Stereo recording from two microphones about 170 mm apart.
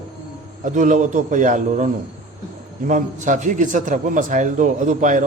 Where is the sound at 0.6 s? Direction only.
45° right (ahead or behind).